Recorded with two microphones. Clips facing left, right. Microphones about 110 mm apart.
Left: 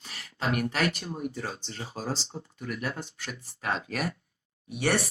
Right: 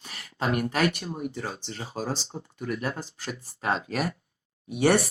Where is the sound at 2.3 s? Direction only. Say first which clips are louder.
Right 2 dB; 25° right (ahead or behind).